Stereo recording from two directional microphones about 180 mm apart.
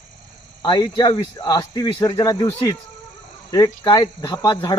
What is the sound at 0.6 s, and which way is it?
Speech, 25° left (ahead or behind).